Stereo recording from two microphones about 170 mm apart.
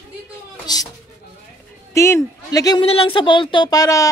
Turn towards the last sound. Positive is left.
turn(degrees=20)  # may be behind; listen again after turning